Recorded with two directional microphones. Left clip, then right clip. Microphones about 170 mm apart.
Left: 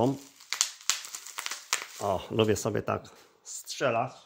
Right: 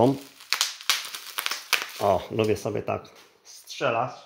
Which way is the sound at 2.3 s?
40° left (ahead or behind).